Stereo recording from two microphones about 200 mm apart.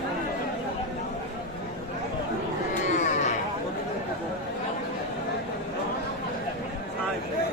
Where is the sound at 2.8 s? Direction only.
35° left (ahead or behind).